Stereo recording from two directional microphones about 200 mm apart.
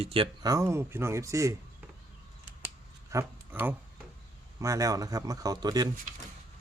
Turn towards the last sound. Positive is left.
turn(degrees=-20)  # may be behind; listen again after turning